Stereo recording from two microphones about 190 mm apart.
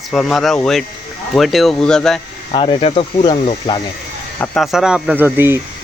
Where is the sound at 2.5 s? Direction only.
30° left (ahead or behind).